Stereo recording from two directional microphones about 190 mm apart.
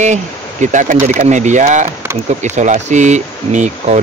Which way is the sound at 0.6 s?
40° right (ahead or behind).